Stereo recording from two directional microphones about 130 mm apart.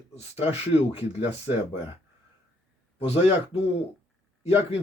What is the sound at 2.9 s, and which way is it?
Speech, 50° left (ahead or behind).